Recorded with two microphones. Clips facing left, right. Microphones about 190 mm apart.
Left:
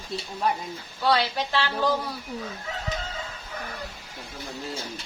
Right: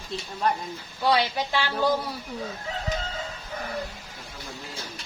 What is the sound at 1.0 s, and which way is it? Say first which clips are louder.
A woman's voice: even; 10° right (ahead or behind).